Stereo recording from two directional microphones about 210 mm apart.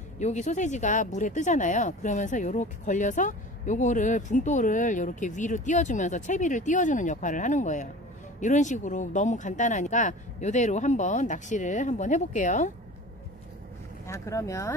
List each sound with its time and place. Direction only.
0.2 s speech: 35° left (ahead or behind)
14.0 s speech: 15° left (ahead or behind)